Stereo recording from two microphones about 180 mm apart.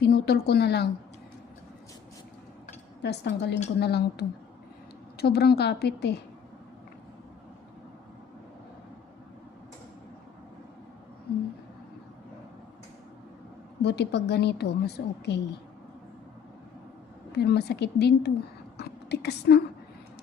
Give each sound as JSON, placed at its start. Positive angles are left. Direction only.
{"t": 0.0, "sound": "speech", "side_deg": 65}
{"t": 3.0, "sound": "a woman's voice", "side_deg": 70}
{"t": 13.8, "sound": "a woman's voice", "side_deg": 65}
{"t": 17.3, "sound": "a woman's voice", "side_deg": 65}